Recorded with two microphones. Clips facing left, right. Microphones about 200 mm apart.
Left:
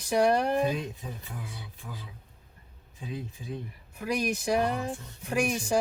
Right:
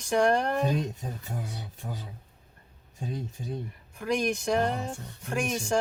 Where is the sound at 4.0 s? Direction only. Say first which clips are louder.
Right 2 dB; 5° left (ahead or behind).